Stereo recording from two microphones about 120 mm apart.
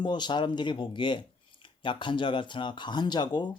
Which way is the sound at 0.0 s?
40° left (ahead or behind).